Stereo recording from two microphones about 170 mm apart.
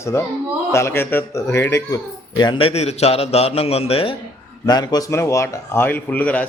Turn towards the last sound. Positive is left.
turn(degrees=10)  # may be behind; listen again after turning